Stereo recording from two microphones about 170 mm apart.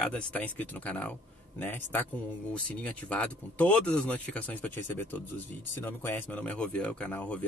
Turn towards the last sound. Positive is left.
turn(degrees=10)  # may be behind; listen again after turning